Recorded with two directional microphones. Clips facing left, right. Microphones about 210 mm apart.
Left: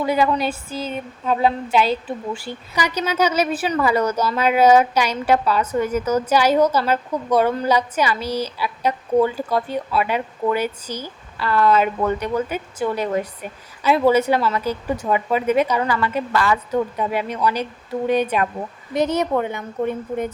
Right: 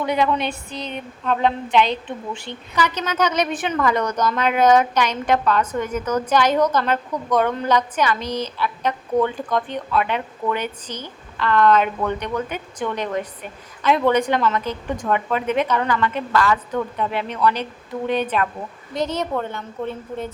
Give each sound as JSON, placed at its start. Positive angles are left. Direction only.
{"t": 0.0, "sound": "a woman's voice", "side_deg": 0}